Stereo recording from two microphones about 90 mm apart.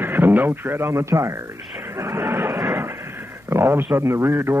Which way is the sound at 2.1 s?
25° right (ahead or behind).